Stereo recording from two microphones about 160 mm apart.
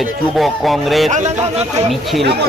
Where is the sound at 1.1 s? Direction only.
45° right (ahead or behind).